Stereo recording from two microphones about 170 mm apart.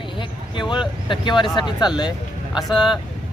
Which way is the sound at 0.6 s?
30° left (ahead or behind).